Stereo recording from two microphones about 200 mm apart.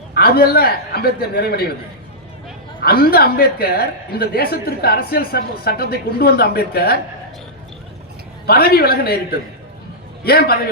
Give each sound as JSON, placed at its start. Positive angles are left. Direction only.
{"t": 0.1, "sound": "a woman's voice", "side_deg": 50}
{"t": 2.8, "sound": "a woman's voice", "side_deg": 50}
{"t": 8.4, "sound": "a woman's voice", "side_deg": 50}